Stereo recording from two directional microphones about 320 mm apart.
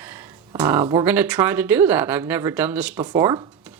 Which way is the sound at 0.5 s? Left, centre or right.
Centre.